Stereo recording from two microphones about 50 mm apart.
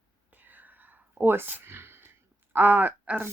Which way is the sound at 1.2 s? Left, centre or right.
Right.